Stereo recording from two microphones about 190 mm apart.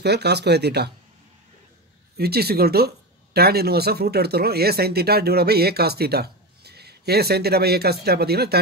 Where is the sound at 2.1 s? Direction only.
55° right (ahead or behind).